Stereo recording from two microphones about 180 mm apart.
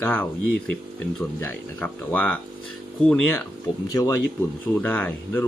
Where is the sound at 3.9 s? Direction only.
20° left (ahead or behind).